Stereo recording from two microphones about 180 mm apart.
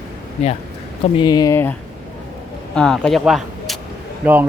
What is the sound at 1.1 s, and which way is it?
Speech, 25° left (ahead or behind).